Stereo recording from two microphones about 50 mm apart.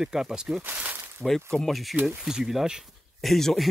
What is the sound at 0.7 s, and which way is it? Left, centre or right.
Speech, right.